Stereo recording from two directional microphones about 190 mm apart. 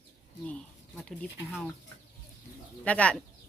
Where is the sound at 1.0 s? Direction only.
5° left (ahead or behind).